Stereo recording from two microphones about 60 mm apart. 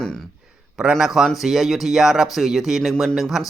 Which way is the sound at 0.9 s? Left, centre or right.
Centre.